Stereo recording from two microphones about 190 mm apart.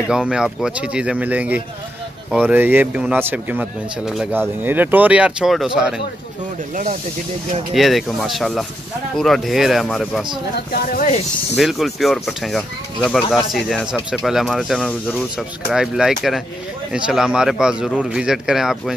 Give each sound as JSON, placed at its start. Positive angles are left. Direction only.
{"t": 0.1, "sound": "speech", "side_deg": -5}
{"t": 6.7, "sound": "speech", "side_deg": -45}
{"t": 7.7, "sound": "speech", "side_deg": 0}
{"t": 10.5, "sound": "speech", "side_deg": 55}
{"t": 11.5, "sound": "speech", "side_deg": 0}